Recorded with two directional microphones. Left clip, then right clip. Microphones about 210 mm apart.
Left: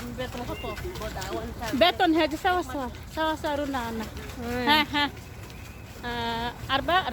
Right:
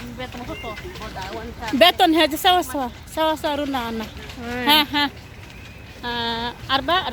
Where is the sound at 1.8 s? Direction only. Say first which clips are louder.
Right 7 dB; 50° right (ahead or behind).